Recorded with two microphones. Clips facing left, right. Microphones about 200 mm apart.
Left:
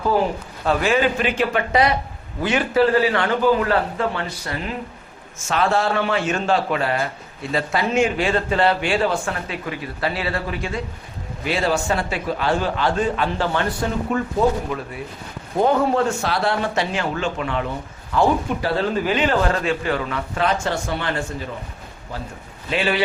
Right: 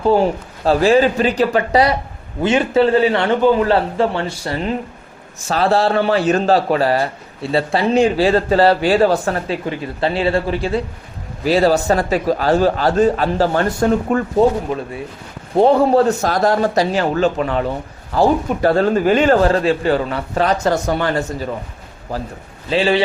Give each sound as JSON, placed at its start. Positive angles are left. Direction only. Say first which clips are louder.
{"t": 0.6, "sound": "a man's voice", "louder": "right 6 dB", "side_deg": -35}
{"t": 2.4, "sound": "a man's voice", "louder": "right 4 dB", "side_deg": -25}
{"t": 15.5, "sound": "a man's voice", "louder": "right 6 dB", "side_deg": -30}
{"t": 22.7, "sound": "a man's voice", "louder": "right 6 dB", "side_deg": -30}